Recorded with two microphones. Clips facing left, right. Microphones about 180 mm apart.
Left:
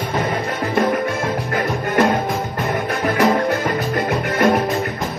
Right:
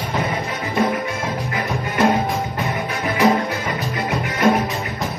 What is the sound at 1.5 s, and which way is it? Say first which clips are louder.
Music: left 4 dB; 55° left (ahead or behind).